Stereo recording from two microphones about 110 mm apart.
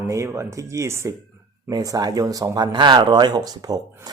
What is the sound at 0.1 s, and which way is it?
Speech, 25° right (ahead or behind).